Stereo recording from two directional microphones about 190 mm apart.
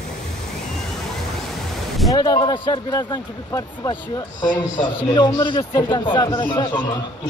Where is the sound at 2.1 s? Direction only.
20° left (ahead or behind).